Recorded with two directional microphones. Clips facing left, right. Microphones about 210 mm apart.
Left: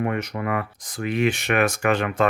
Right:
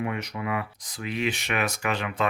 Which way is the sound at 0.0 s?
50° left (ahead or behind).